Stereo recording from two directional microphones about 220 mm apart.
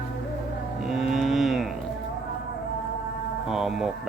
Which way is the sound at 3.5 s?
Centre (ahead or behind).